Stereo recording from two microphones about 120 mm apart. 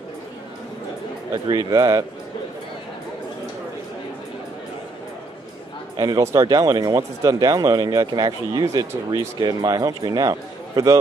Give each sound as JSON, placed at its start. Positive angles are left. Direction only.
{"t": 1.3, "sound": "speech", "side_deg": -30}
{"t": 5.9, "sound": "speech", "side_deg": -30}